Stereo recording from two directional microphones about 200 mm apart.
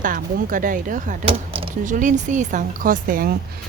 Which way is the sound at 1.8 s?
40° right (ahead or behind).